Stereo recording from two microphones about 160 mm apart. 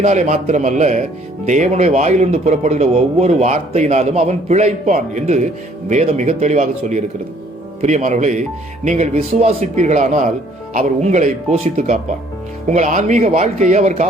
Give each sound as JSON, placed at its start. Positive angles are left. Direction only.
{"t": 0.0, "sound": "a man's voice", "side_deg": -45}